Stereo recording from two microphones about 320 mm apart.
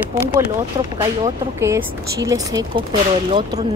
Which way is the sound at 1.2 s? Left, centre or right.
Centre.